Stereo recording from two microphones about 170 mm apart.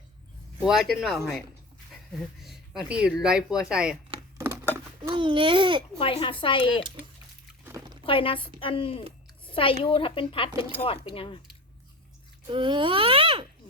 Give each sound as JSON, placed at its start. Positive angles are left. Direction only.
{"t": 0.6, "sound": "speech", "side_deg": 0}
{"t": 4.4, "sound": "patter", "side_deg": -15}
{"t": 5.1, "sound": "a child's voice", "side_deg": -30}
{"t": 6.0, "sound": "a woman's voice", "side_deg": 30}
{"t": 7.6, "sound": "a sound", "side_deg": -15}
{"t": 8.0, "sound": "a woman's voice", "side_deg": 30}
{"t": 9.4, "sound": "a sound", "side_deg": 30}
{"t": 9.8, "sound": "a woman's voice", "side_deg": 30}
{"t": 12.5, "sound": "speech", "side_deg": -30}